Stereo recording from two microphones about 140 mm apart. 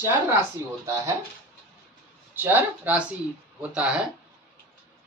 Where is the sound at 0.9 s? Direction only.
25° right (ahead or behind).